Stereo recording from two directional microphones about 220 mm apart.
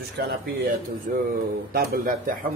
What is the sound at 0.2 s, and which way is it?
Speech, 45° right (ahead or behind).